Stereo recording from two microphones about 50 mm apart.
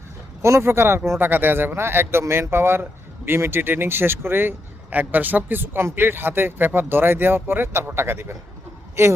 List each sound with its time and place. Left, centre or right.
0.4 s speech: right
1.2 s speech: right
9.0 s speech: right